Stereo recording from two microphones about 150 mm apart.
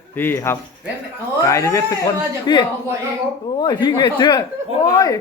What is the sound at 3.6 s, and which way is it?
Speech, 30° left (ahead or behind).